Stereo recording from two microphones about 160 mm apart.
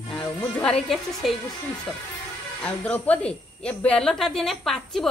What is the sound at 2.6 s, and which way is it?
A woman's voice, 10° left (ahead or behind).